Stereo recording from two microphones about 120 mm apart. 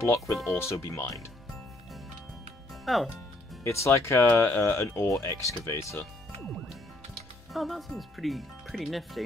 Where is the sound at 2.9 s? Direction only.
Centre (ahead or behind).